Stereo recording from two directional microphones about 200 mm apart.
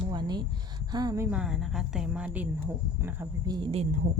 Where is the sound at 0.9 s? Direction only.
20° right (ahead or behind).